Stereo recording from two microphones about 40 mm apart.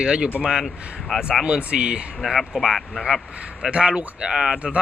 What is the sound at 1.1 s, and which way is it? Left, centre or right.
Speech, centre.